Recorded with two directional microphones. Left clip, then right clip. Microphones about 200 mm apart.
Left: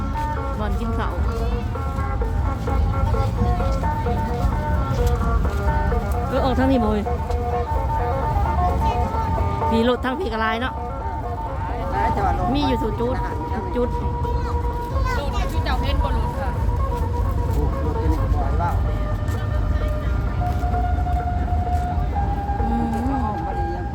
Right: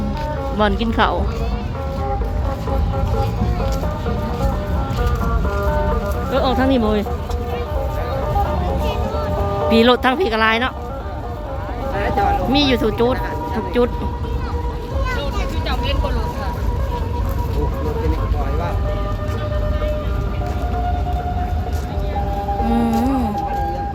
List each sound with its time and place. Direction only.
0.6 s speech: 35° right (ahead or behind)
6.3 s speech: centre (ahead or behind)
9.6 s speech: 20° right (ahead or behind)
12.5 s speech: 20° right (ahead or behind)
22.7 s music: 30° right (ahead or behind)